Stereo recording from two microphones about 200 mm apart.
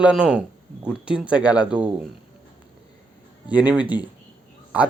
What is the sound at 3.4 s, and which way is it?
Speech, 5° right (ahead or behind).